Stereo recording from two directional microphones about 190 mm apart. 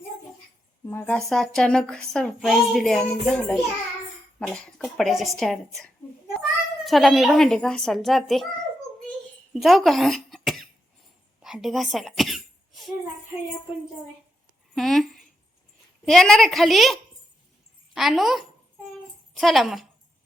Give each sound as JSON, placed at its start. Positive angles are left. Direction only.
{"t": 0.9, "sound": "a woman's voice", "side_deg": 10}
{"t": 9.0, "sound": "cough", "side_deg": 0}
{"t": 11.4, "sound": "throat clearing", "side_deg": 0}
{"t": 14.8, "sound": "a woman's voice", "side_deg": 0}